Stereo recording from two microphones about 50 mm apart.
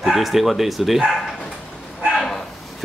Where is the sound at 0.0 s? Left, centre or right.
Centre.